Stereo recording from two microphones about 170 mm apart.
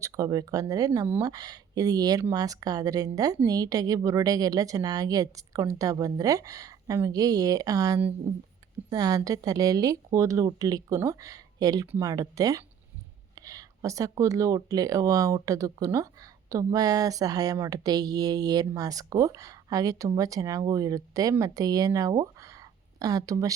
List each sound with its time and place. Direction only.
0.0 s speech: 20° right (ahead or behind)